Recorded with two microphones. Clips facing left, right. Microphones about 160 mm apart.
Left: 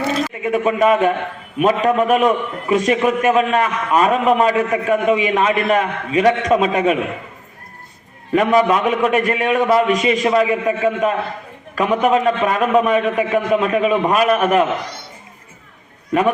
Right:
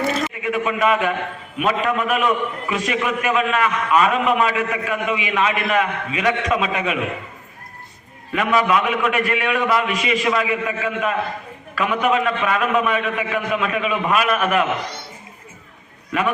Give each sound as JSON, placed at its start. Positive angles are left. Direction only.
{"t": 0.4, "sound": "a man's voice", "side_deg": 40}
{"t": 8.3, "sound": "a man's voice", "side_deg": 40}